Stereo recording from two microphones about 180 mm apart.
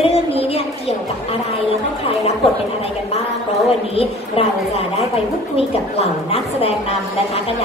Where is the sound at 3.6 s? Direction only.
35° left (ahead or behind).